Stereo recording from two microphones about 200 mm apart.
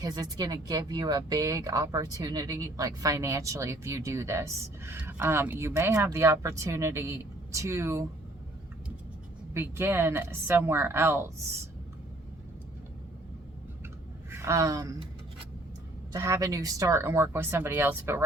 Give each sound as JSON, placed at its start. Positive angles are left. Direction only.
{"t": 0.0, "sound": "speech", "side_deg": -20}
{"t": 9.6, "sound": "speech", "side_deg": -10}
{"t": 14.3, "sound": "a woman's voice", "side_deg": -15}
{"t": 16.1, "sound": "speech", "side_deg": -15}